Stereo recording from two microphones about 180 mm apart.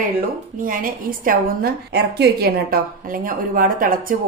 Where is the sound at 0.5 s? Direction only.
50° right (ahead or behind).